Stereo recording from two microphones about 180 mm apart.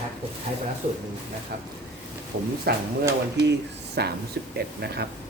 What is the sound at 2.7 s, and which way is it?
Speech, 60° right (ahead or behind).